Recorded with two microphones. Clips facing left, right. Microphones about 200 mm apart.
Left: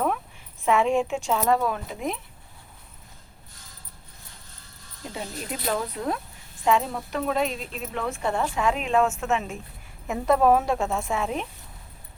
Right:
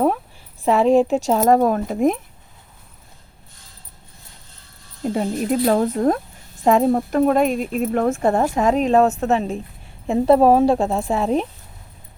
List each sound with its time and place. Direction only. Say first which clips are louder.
0.6 s speech: right 7 dB; 35° right (ahead or behind)
5.0 s speech: right 13 dB; 50° right (ahead or behind); by 11.4 s 35° right (ahead or behind)